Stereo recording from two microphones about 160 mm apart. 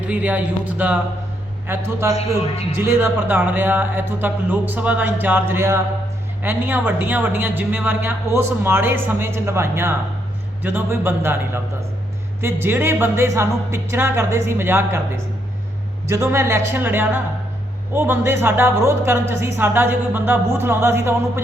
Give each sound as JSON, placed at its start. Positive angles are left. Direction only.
{"t": 0.1, "sound": "a woman's voice", "side_deg": -10}